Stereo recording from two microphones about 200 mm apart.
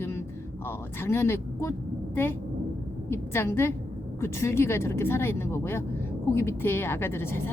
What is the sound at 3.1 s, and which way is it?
Speech, 10° left (ahead or behind).